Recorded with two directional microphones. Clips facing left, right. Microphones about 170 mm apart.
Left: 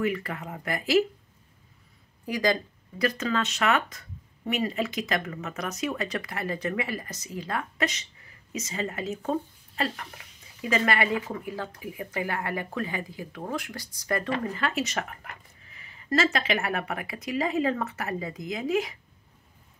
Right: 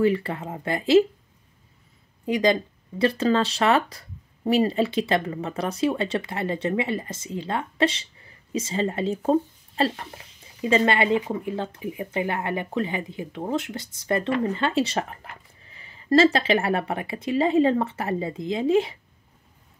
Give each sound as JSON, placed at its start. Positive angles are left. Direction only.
{"t": 0.0, "sound": "speech", "side_deg": -30}
{"t": 2.2, "sound": "speech", "side_deg": -25}